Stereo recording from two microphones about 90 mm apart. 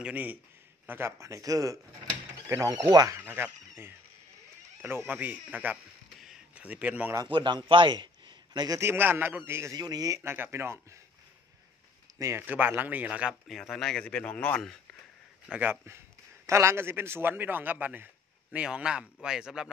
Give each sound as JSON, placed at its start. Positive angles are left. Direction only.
{"t": 0.0, "sound": "a man's voice", "side_deg": -20}
{"t": 3.2, "sound": "a man's voice", "side_deg": -20}
{"t": 7.2, "sound": "a man's voice", "side_deg": -60}
{"t": 8.7, "sound": "a man's voice", "side_deg": -25}
{"t": 9.8, "sound": "speech", "side_deg": -45}
{"t": 10.2, "sound": "a man's voice", "side_deg": -25}
{"t": 12.2, "sound": "a man's voice", "side_deg": -30}
{"t": 12.4, "sound": "a man's voice", "side_deg": -20}
{"t": 13.5, "sound": "speech", "side_deg": 0}
{"t": 15.5, "sound": "a man's voice", "side_deg": -20}